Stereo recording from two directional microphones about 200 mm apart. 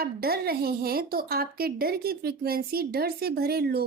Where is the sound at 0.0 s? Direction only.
50° right (ahead or behind).